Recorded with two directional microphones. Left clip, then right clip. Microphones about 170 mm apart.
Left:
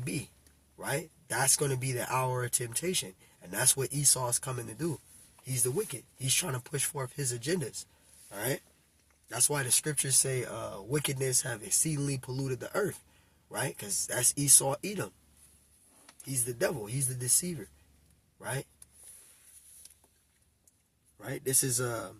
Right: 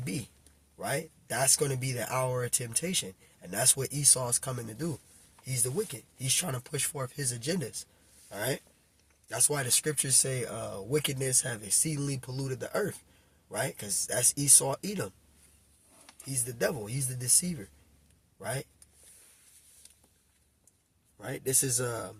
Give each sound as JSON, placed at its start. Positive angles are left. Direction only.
{"t": 1.3, "sound": "speech", "side_deg": -25}
{"t": 16.3, "sound": "speech", "side_deg": -25}
{"t": 18.3, "sound": "speech", "side_deg": -25}
{"t": 21.2, "sound": "speech", "side_deg": -25}